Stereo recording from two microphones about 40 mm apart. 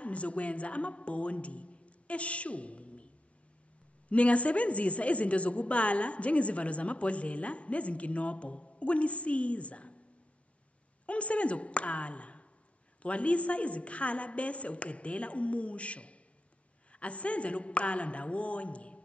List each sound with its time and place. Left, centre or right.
0.0 s a woman's voice: left
4.1 s a woman's voice: left
11.1 s a woman's voice: left